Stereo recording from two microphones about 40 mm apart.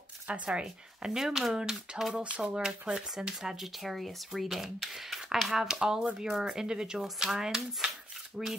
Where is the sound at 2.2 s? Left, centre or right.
Right.